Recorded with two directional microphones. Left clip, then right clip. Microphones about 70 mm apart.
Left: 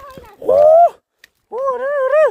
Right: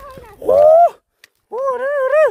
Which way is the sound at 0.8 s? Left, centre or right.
Centre.